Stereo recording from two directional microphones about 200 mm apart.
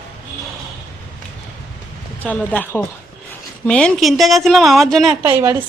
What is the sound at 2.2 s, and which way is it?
A woman's voice, 10° left (ahead or behind).